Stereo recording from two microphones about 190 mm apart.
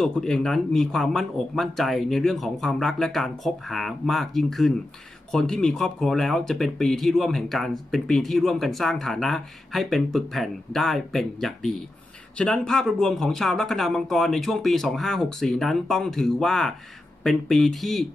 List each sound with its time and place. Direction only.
0.0 s speech: 5° left (ahead or behind)